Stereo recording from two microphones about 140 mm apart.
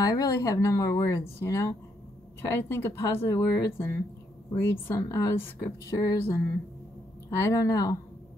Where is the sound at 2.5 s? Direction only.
15° left (ahead or behind).